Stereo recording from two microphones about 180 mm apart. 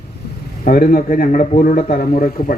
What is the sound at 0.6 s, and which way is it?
Speech, 50° left (ahead or behind).